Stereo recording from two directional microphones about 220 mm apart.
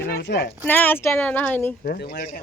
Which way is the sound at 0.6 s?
10° left (ahead or behind).